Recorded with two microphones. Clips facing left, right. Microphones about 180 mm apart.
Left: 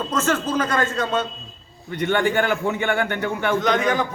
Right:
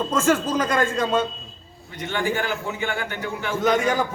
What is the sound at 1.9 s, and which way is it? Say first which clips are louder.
A man's voice: left 5 dB; 60° left (ahead or behind).